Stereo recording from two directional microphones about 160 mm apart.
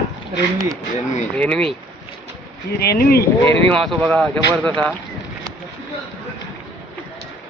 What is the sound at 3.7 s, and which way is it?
Speech, 5° left (ahead or behind).